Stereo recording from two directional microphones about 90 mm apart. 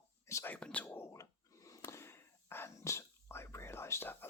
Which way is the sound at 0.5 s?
15° left (ahead or behind).